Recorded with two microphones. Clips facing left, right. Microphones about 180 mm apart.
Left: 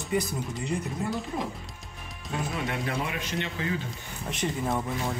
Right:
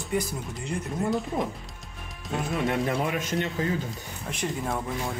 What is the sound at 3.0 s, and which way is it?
Speech, 45° right (ahead or behind).